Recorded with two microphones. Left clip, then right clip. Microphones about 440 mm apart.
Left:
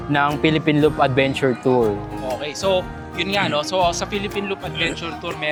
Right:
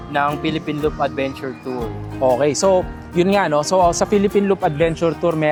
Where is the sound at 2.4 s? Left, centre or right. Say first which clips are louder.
Right 5 dB; right.